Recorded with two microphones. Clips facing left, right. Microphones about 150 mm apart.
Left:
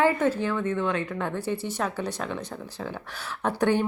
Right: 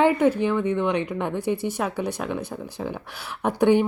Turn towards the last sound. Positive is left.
turn(degrees=-15)  # may be behind; listen again after turning